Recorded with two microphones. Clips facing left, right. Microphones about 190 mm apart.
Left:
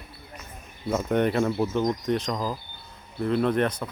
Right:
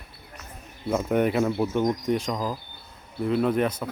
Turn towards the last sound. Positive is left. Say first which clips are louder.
# even
turn(degrees=-5)  # may be behind; listen again after turning